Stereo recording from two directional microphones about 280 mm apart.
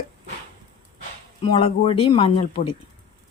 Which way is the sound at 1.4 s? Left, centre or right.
Centre.